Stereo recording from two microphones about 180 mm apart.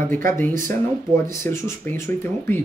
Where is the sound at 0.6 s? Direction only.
15° left (ahead or behind).